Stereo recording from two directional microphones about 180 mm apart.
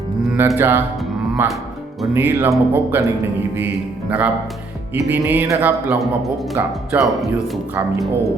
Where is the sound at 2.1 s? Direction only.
10° right (ahead or behind).